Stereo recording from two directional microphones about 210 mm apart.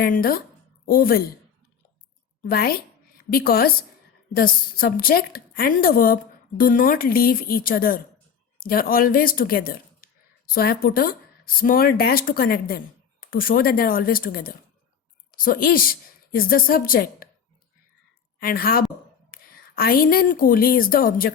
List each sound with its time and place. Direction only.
0.0 s a woman's voice: 45° left (ahead or behind)
2.4 s a woman's voice: 45° left (ahead or behind)
18.3 s a woman's voice: 45° left (ahead or behind)